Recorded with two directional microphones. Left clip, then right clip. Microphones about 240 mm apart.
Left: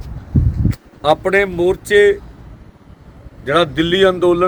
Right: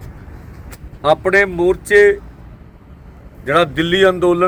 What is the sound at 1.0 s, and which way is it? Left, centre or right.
Speech, left.